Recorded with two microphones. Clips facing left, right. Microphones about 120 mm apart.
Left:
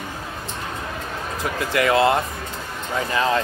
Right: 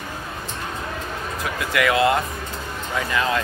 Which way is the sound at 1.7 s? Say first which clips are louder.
Left 1 dB; 30° left (ahead or behind).